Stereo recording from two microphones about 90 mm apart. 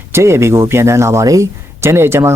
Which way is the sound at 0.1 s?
30° right (ahead or behind).